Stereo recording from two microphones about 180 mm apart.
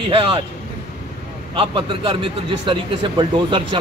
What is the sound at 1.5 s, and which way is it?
A man's voice, 30° right (ahead or behind).